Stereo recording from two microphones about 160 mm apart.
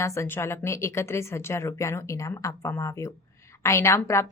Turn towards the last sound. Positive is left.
turn(degrees=15)  # may be behind; listen again after turning